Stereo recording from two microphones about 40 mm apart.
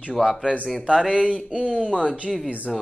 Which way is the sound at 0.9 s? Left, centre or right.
Centre.